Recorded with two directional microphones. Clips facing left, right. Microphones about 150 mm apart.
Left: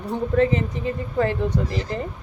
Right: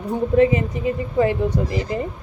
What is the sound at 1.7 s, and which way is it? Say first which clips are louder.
Speech: right 3 dB; 15° right (ahead or behind).